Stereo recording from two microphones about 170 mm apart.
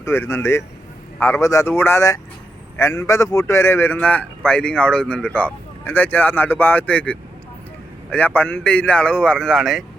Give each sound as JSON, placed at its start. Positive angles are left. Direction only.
{"t": 0.0, "sound": "a man's voice", "side_deg": 15}